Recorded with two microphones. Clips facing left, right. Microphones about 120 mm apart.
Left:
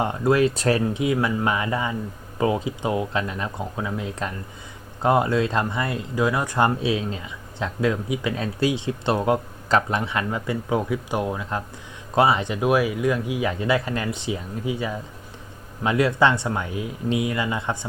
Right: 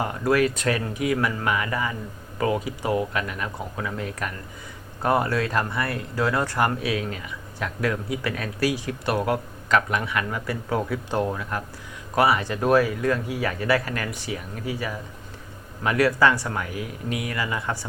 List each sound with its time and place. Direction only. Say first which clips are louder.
0.0 s speech: left 2 dB; 25° left (ahead or behind)
6.6 s speech: left 3 dB; 25° left (ahead or behind)